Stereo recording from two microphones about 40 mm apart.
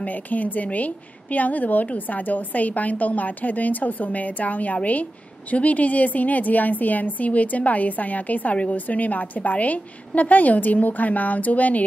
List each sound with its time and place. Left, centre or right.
0.0 s a woman's voice: left